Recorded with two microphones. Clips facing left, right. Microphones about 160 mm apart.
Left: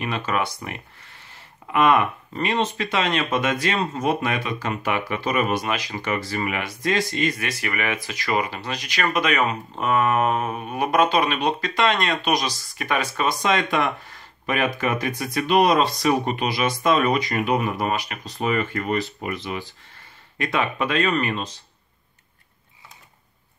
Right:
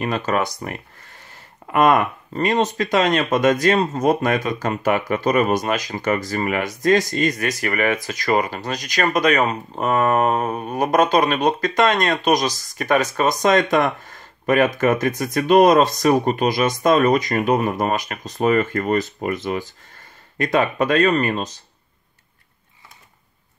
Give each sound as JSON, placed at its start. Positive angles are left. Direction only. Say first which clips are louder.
{"t": 0.0, "sound": "speech", "louder": "right 4 dB", "side_deg": -40}